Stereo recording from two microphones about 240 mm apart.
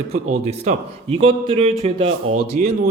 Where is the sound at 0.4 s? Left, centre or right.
Right.